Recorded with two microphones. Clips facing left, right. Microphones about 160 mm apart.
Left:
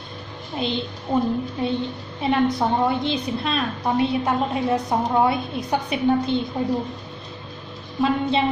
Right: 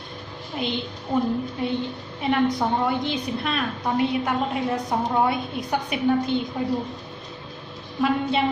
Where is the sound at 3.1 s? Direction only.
25° left (ahead or behind).